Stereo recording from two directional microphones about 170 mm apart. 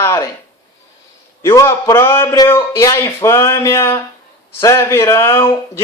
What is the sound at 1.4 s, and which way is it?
Speech, 15° left (ahead or behind).